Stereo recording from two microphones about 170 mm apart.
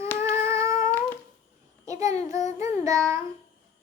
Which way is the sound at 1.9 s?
20° right (ahead or behind).